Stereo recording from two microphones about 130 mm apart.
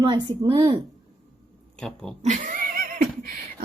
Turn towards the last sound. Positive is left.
turn(degrees=-90)